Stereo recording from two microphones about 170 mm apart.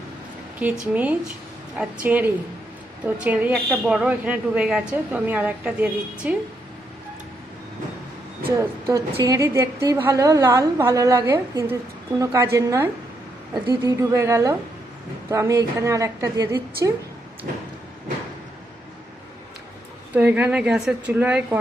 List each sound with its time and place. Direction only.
0.6 s a woman's voice: 10° right (ahead or behind)
8.4 s a woman's voice: 20° right (ahead or behind)
20.1 s a woman's voice: 10° right (ahead or behind)